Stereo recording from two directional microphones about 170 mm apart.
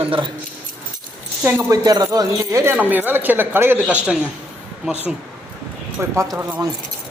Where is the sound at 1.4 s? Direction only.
15° right (ahead or behind).